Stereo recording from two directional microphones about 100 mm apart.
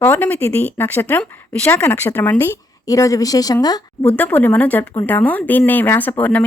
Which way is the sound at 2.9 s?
35° left (ahead or behind).